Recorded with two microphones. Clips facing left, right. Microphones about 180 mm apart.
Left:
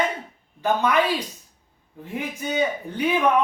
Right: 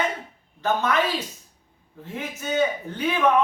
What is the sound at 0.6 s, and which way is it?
Speech, 15° left (ahead or behind).